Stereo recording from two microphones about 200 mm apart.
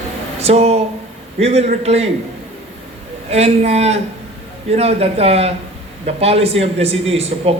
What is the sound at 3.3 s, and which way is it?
Speech, 30° right (ahead or behind).